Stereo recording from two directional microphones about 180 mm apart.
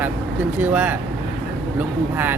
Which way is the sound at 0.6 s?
10° right (ahead or behind).